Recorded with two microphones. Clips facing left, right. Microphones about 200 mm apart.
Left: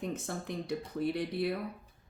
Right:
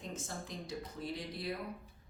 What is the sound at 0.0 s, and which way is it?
Speech, 60° left (ahead or behind).